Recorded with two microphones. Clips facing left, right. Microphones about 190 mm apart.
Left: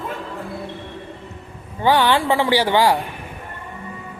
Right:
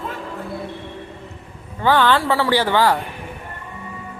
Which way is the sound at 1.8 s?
15° left (ahead or behind).